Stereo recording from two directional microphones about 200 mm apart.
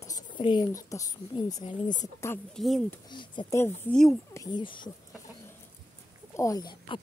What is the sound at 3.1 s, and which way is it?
Speech, 25° left (ahead or behind).